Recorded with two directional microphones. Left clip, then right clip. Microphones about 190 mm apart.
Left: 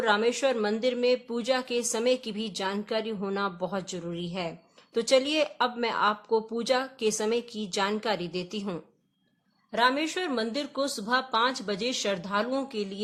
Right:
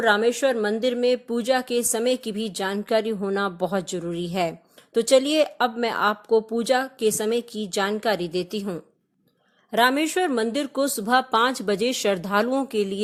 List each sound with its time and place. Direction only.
0.0 s speech: 25° right (ahead or behind)
9.7 s speech: 40° right (ahead or behind)